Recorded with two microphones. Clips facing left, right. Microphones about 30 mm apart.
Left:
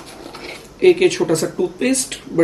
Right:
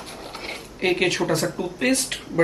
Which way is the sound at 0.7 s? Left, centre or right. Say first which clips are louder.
Left 9 dB; centre.